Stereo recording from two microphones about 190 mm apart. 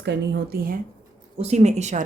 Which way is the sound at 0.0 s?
65° right (ahead or behind).